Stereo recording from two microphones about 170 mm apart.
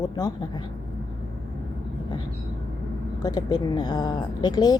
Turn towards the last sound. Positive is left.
turn(degrees=25)  # may be behind; listen again after turning